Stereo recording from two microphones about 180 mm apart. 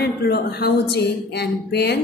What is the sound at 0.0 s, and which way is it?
Speech, 60° left (ahead or behind).